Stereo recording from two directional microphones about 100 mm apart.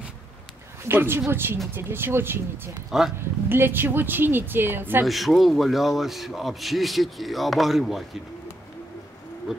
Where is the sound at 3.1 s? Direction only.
20° right (ahead or behind).